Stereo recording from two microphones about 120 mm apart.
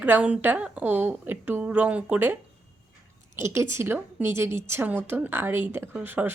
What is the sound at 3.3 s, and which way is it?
A woman's voice, 20° right (ahead or behind).